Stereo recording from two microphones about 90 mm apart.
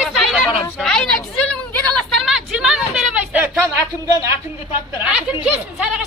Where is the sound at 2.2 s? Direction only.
5° right (ahead or behind).